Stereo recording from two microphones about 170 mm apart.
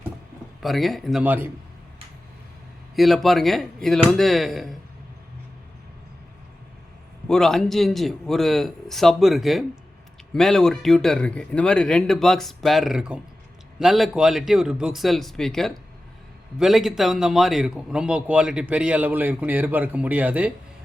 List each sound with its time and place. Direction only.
0.6 s speech: centre (ahead or behind)
2.9 s speech: centre (ahead or behind)
7.3 s a man's voice: 5° left (ahead or behind)